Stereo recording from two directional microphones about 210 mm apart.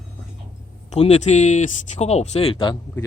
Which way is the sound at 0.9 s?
30° left (ahead or behind).